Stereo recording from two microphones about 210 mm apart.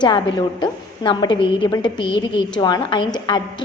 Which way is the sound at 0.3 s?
20° left (ahead or behind).